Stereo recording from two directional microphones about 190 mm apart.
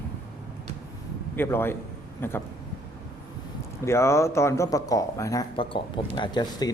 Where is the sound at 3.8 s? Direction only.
15° left (ahead or behind).